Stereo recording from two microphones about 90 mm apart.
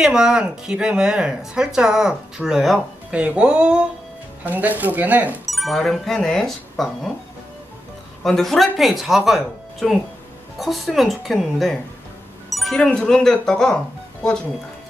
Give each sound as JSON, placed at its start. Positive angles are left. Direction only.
{"t": 0.0, "sound": "speech", "side_deg": -5}
{"t": 5.4, "sound": "speech", "side_deg": 0}
{"t": 8.2, "sound": "speech", "side_deg": 5}